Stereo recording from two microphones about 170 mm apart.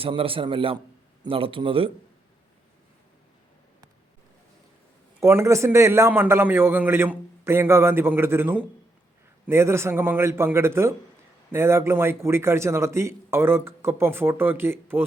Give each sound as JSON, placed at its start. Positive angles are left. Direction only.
{"t": 0.0, "sound": "a man's voice", "side_deg": -35}
{"t": 5.2, "sound": "a man's voice", "side_deg": -15}